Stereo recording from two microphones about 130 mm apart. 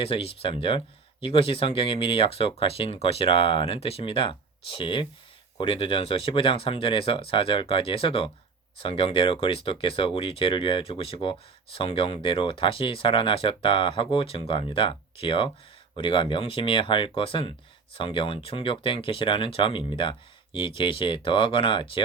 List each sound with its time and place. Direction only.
0.0 s speech: 45° left (ahead or behind)